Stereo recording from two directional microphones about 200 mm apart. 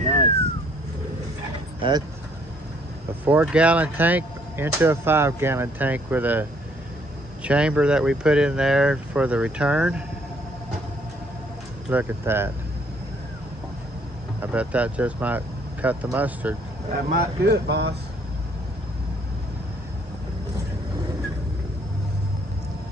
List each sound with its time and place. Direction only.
1.8 s speech: 20° right (ahead or behind)
3.3 s speech: 5° right (ahead or behind)
7.4 s speech: 5° right (ahead or behind)
11.9 s speech: 10° right (ahead or behind)
14.4 s speech: 5° right (ahead or behind)
16.9 s speech: 50° right (ahead or behind)